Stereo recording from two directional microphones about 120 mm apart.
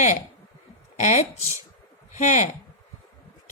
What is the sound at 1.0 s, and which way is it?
Speech, 70° left (ahead or behind).